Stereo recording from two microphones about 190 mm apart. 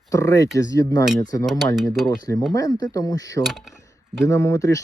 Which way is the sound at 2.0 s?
20° left (ahead or behind).